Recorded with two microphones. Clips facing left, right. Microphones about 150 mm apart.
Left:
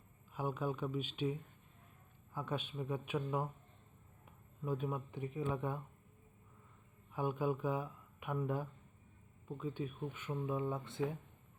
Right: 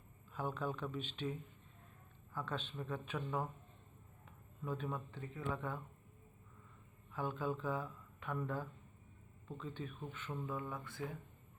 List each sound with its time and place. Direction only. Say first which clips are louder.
0.3 s speech: left 2 dB; 10° left (ahead or behind)
7.1 s speech: left 3 dB; 15° left (ahead or behind)